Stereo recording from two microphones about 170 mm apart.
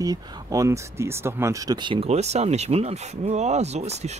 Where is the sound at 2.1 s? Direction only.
40° right (ahead or behind).